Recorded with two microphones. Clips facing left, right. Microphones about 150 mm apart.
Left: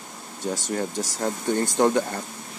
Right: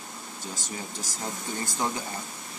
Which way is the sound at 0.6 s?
65° left (ahead or behind).